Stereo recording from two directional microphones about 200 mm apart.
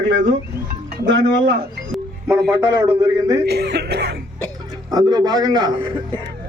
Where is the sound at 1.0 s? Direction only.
70° right (ahead or behind).